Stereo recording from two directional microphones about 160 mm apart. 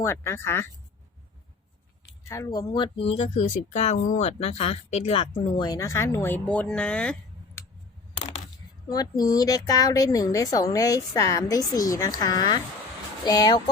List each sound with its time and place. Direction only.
0.0 s speech: 15° left (ahead or behind)
2.3 s speech: 20° left (ahead or behind); by 3.9 s 45° left (ahead or behind)
3.9 s speech: 55° left (ahead or behind); by 7.6 s 5° left (ahead or behind)
8.1 s a sound: 40° left (ahead or behind)
8.9 s speech: 25° left (ahead or behind)